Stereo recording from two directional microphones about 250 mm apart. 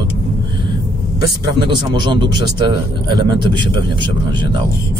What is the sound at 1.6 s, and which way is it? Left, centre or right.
A man's voice, centre.